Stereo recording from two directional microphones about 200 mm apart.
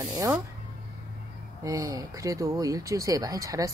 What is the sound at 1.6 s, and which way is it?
Speech, 15° right (ahead or behind).